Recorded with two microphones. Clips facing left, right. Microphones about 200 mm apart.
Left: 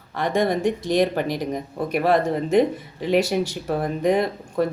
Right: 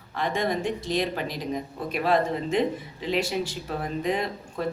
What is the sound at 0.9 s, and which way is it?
Speech, 50° left (ahead or behind).